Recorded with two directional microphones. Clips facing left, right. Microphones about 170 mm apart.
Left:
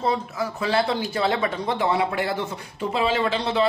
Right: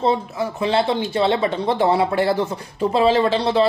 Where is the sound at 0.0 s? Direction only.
25° right (ahead or behind).